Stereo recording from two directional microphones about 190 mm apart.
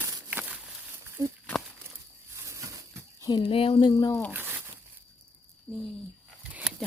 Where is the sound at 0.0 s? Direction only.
10° right (ahead or behind).